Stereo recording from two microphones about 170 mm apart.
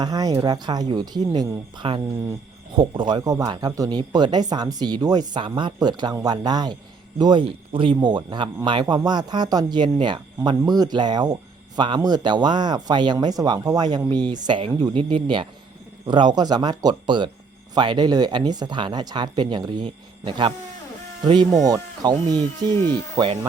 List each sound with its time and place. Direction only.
0.0 s speech: 20° right (ahead or behind)
21.6 s speech: 20° right (ahead or behind)
22.7 s speech: 15° left (ahead or behind)
23.1 s speech: 25° right (ahead or behind)